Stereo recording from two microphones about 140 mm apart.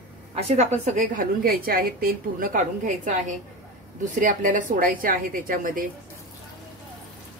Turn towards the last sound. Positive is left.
turn(degrees=-80)